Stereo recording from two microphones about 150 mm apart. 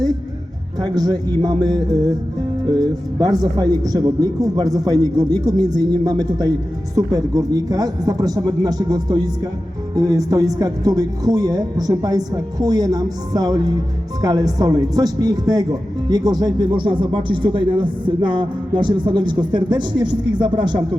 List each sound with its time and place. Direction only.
0.8 s a man's voice: 25° right (ahead or behind)